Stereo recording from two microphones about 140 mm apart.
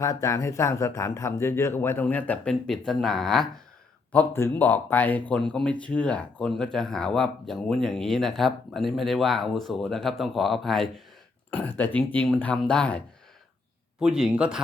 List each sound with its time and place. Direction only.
0.0 s speech: 20° left (ahead or behind); by 3.5 s centre (ahead or behind)
4.1 s speech: 15° left (ahead or behind)
11.5 s speech: 15° left (ahead or behind)
14.0 s speech: 5° right (ahead or behind)